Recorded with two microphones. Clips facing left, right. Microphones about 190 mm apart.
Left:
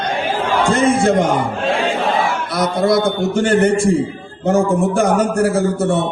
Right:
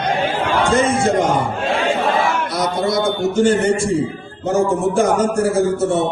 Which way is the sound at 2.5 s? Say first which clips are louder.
Left 7 dB; 60° left (ahead or behind).